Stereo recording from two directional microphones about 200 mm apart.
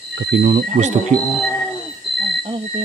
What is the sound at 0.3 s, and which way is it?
Speech, 45° right (ahead or behind).